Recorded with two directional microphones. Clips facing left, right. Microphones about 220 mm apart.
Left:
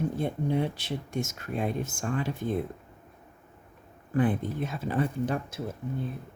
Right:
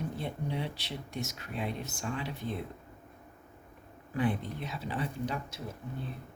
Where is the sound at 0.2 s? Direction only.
50° left (ahead or behind).